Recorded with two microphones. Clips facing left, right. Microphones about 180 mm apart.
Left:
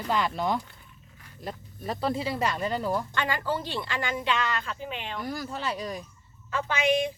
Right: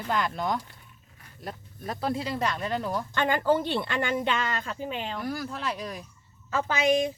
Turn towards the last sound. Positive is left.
turn(degrees=-40)  # may be behind; listen again after turning